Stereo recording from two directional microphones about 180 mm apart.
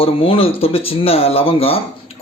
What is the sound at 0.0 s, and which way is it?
A man's voice, 30° left (ahead or behind).